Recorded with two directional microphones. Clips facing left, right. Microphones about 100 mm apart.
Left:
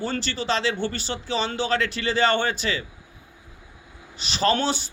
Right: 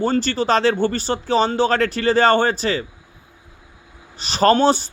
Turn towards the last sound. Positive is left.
turn(degrees=-40)  # may be behind; listen again after turning